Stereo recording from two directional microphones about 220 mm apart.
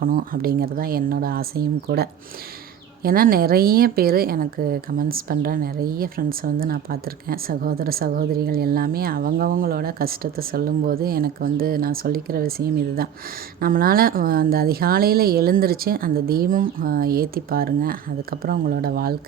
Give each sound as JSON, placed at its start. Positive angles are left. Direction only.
{"t": 0.0, "sound": "a woman's voice", "side_deg": -40}